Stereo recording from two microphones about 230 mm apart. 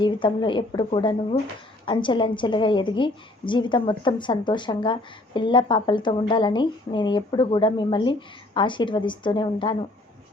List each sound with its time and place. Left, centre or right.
0.0 s a woman's voice: left